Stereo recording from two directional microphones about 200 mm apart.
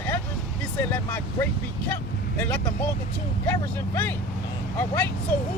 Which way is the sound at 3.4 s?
15° left (ahead or behind).